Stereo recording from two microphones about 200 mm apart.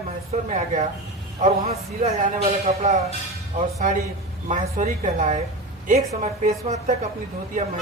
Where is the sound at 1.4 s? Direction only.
30° right (ahead or behind).